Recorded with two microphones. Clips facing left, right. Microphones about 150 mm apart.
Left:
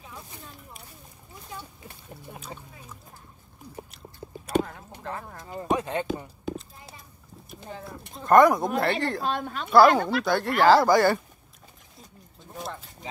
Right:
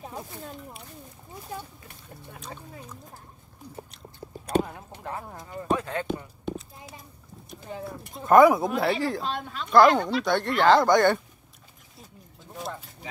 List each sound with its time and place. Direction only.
5.0 s speech: 15° right (ahead or behind)
5.5 s speech: 25° left (ahead or behind)
7.7 s speech: centre (ahead or behind)
9.2 s a woman's voice: 50° left (ahead or behind)
9.7 s speech: 5° left (ahead or behind)